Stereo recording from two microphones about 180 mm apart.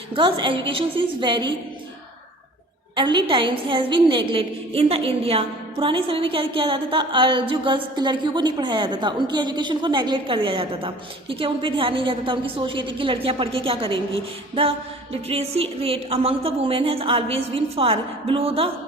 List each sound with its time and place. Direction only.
0.1 s a woman's voice: 25° right (ahead or behind)
2.9 s a woman's voice: 25° right (ahead or behind)